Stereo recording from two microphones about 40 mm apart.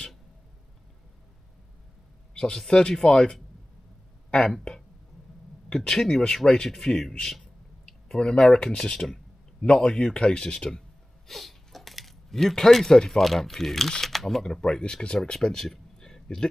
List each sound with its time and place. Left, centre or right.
2.3 s speech: left
5.8 s speech: centre
11.2 s speech: centre